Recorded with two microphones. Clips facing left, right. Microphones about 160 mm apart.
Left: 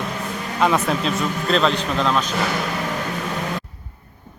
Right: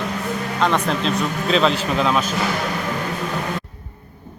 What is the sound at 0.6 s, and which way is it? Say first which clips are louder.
Speech: left 1 dB; 5° left (ahead or behind).